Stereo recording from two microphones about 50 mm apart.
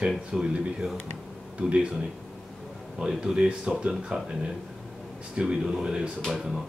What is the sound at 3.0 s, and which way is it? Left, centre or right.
Speech, centre.